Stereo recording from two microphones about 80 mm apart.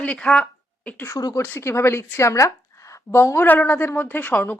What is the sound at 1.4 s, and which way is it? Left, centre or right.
A woman's voice, left.